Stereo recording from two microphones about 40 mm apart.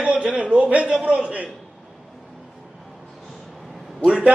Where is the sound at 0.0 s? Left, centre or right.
Right.